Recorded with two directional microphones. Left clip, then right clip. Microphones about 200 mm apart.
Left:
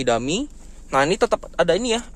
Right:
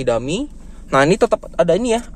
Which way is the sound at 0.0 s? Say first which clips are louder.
Right 2 dB; 10° left (ahead or behind).